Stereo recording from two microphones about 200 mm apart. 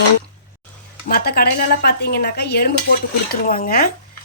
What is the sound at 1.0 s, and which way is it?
Speech, 50° left (ahead or behind).